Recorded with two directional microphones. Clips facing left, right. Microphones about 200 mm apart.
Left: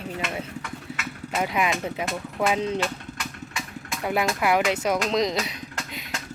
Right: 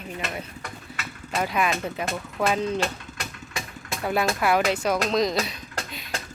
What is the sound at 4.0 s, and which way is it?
Speech, 15° left (ahead or behind).